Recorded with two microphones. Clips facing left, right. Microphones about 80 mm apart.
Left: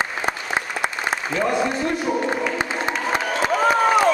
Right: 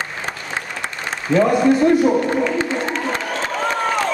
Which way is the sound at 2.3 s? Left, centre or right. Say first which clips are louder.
Right 4 dB; centre.